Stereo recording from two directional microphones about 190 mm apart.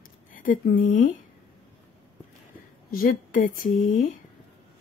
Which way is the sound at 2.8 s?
50° left (ahead or behind).